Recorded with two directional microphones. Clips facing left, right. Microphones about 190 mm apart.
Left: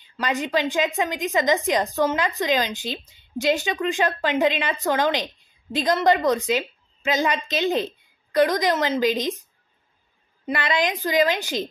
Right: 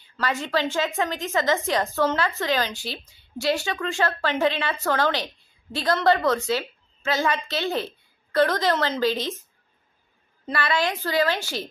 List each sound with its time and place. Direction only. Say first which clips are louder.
0.0 s a woman's voice: left 2 dB; 15° left (ahead or behind)